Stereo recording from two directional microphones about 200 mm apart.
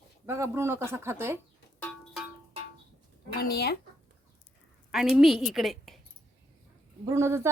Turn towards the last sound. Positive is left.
turn(degrees=-15)  # may be behind; listen again after turning